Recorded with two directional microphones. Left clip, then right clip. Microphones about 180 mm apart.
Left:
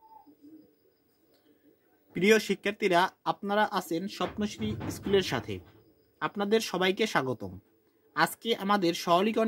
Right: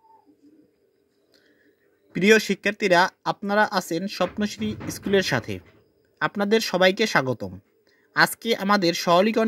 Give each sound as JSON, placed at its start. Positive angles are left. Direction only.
{"t": 2.1, "sound": "speech", "side_deg": -35}